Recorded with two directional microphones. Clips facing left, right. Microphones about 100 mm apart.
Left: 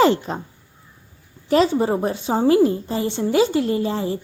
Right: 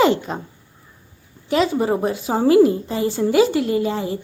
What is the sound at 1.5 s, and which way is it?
Speech, 35° left (ahead or behind).